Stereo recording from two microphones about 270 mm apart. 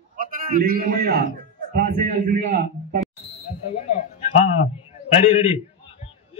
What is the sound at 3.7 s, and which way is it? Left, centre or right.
A man's voice, left.